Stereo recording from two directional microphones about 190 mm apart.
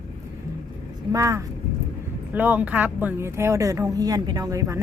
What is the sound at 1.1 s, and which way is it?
Speech, 15° right (ahead or behind).